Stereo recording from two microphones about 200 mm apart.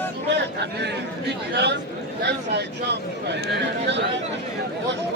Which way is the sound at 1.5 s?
60° right (ahead or behind).